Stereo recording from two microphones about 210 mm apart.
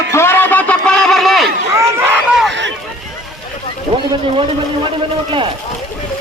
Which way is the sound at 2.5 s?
60° right (ahead or behind).